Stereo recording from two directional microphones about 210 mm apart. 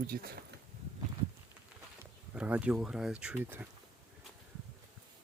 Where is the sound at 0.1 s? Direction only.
45° right (ahead or behind).